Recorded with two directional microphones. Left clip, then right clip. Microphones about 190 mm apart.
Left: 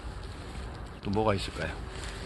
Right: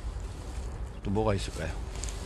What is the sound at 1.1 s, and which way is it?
Speech, 15° right (ahead or behind).